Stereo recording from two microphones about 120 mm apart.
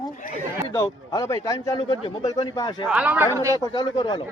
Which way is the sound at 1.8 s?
50° left (ahead or behind).